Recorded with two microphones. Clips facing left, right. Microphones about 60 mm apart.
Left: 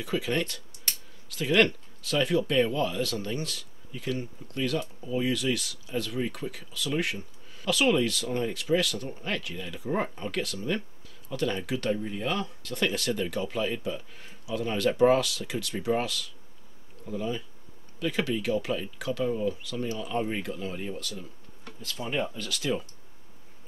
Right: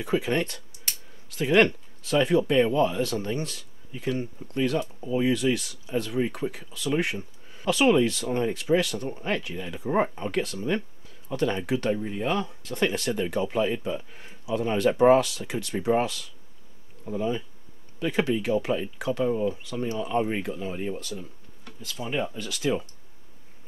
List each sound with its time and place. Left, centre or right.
0.0 s speech: right
21.6 s speech: centre